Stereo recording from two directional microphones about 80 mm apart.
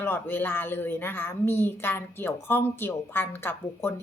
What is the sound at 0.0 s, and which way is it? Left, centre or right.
A woman's voice, left.